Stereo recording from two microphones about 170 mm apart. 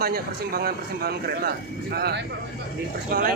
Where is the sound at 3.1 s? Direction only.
60° right (ahead or behind).